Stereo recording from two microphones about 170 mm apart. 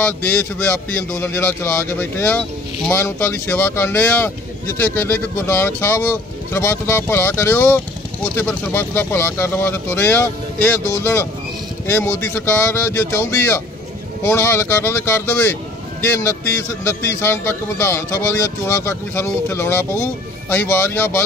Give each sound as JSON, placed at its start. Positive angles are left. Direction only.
{"t": 0.0, "sound": "a man's voice", "side_deg": 10}